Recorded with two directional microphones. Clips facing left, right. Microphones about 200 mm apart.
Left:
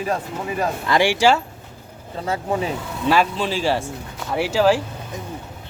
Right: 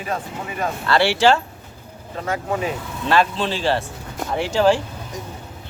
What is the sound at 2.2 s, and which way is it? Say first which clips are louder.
Speech: left 1 dB; 30° left (ahead or behind).